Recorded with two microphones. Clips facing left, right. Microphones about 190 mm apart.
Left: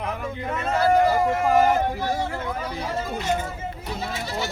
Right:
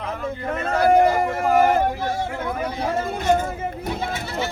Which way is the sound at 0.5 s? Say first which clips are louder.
Right 3 dB; 50° right (ahead or behind).